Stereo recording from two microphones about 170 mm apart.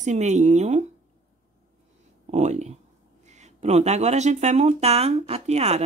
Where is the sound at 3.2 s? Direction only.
45° right (ahead or behind).